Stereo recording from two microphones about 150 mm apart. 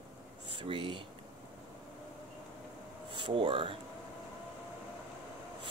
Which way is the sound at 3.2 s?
35° right (ahead or behind).